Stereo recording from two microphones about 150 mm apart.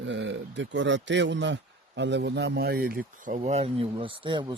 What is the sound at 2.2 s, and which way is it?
Speech, 90° right.